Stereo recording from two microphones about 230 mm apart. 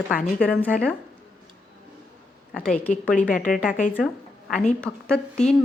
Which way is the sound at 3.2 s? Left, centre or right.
Left.